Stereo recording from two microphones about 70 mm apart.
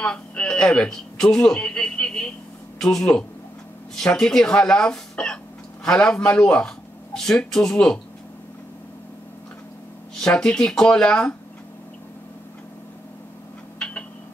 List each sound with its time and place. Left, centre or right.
0.0 s speech: centre
10.1 s speech: centre
13.7 s a sound: centre